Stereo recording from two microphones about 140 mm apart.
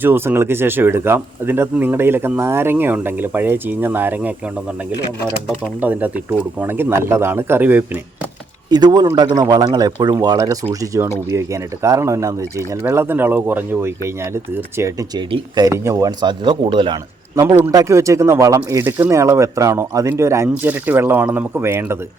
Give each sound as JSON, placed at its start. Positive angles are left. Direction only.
{"t": 0.0, "sound": "speech", "side_deg": -15}
{"t": 5.5, "sound": "speech", "side_deg": -10}
{"t": 8.7, "sound": "a man's voice", "side_deg": -30}